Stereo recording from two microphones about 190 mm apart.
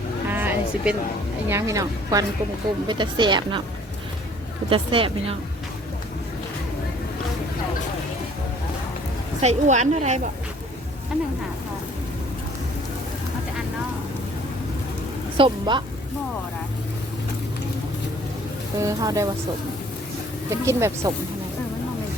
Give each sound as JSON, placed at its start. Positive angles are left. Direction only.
{"t": 0.3, "sound": "sheep", "side_deg": -10}
{"t": 1.5, "sound": "a woman's voice", "side_deg": -15}
{"t": 4.7, "sound": "speech", "side_deg": -30}
{"t": 9.4, "sound": "a woman's voice", "side_deg": -35}
{"t": 15.4, "sound": "speech", "side_deg": -25}
{"t": 18.8, "sound": "a woman's voice", "side_deg": -15}
{"t": 20.5, "sound": "a woman's voice", "side_deg": -15}